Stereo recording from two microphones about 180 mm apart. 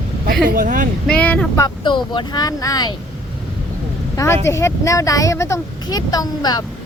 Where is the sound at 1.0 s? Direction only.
5° left (ahead or behind).